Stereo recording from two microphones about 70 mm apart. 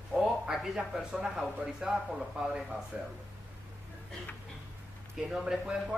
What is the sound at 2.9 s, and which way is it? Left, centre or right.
Speech, right.